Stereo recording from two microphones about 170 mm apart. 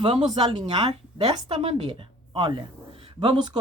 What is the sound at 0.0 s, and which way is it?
Speech, 40° right (ahead or behind).